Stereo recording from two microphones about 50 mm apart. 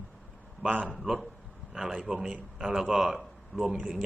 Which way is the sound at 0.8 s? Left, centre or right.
Centre.